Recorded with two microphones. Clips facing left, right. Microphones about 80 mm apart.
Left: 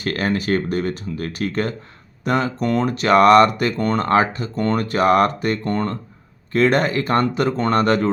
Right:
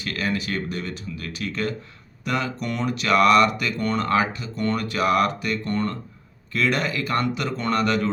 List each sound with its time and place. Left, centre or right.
0.0 s speech: left